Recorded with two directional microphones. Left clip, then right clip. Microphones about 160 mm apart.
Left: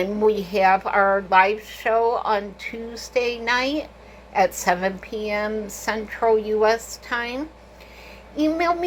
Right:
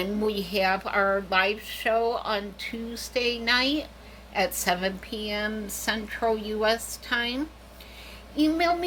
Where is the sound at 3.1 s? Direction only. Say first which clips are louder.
Left 3 dB; 35° right (ahead or behind).